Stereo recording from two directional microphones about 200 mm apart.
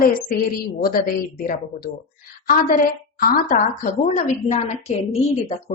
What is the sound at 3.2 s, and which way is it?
A woman's voice, 45° left (ahead or behind).